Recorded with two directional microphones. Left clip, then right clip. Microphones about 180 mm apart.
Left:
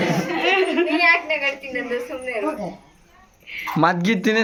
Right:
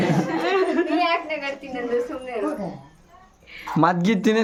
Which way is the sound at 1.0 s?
50° right (ahead or behind).